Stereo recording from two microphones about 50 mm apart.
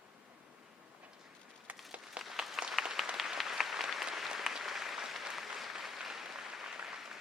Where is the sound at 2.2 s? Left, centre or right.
Right.